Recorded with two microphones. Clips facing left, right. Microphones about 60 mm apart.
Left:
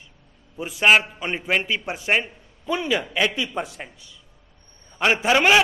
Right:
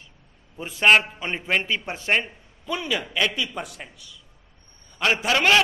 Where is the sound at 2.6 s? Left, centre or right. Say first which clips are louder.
Left 4 dB; left.